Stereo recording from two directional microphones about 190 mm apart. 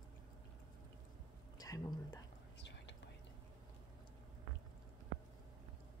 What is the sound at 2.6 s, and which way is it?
Whispering, 70° left (ahead or behind).